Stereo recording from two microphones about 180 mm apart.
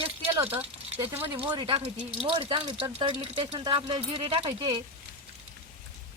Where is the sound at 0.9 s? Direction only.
15° right (ahead or behind).